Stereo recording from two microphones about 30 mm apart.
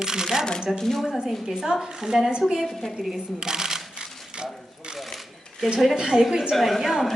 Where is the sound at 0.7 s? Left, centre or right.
Centre.